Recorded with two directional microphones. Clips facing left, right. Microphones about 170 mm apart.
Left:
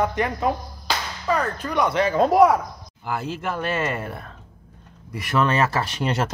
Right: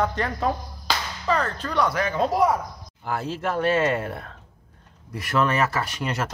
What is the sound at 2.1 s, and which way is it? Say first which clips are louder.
Speech: left 7 dB; 50° left (ahead or behind).